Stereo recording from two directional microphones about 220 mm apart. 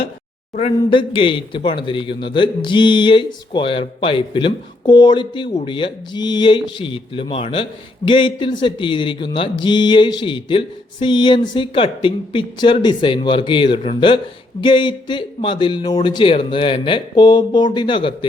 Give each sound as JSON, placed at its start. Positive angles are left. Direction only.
{"t": 0.5, "sound": "speech", "side_deg": 25}